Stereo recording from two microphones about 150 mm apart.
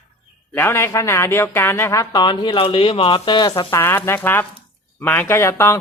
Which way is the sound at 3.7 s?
15° left (ahead or behind).